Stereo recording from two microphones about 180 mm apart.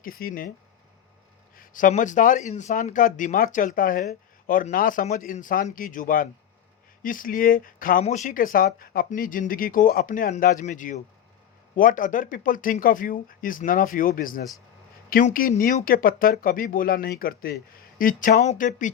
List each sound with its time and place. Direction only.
0.0 s speech: 55° left (ahead or behind)
1.5 s speech: 45° left (ahead or behind)